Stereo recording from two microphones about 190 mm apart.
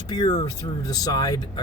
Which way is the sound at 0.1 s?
20° left (ahead or behind).